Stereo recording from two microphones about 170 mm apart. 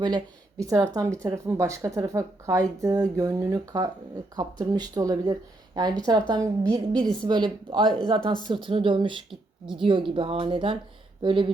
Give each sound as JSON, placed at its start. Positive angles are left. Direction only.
{"t": 0.6, "sound": "speech", "side_deg": -20}